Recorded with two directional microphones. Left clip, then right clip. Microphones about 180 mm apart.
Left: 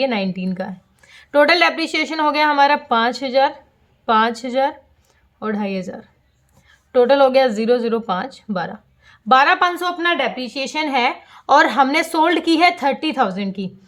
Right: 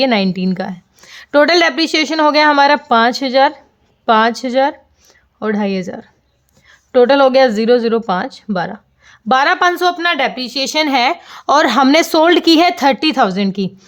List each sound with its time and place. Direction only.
0.0 s a woman's voice: 45° right (ahead or behind)